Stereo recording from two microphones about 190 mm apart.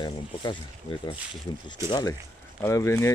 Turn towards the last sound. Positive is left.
turn(degrees=15)  # may be behind; listen again after turning